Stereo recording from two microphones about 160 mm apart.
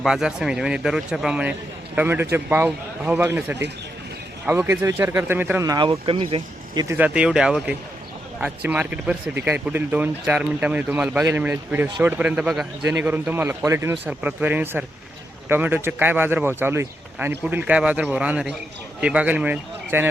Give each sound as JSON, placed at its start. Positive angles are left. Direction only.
{"t": 0.0, "sound": "speech", "side_deg": -5}
{"t": 5.6, "sound": "speech", "side_deg": -25}
{"t": 6.8, "sound": "speech", "side_deg": -10}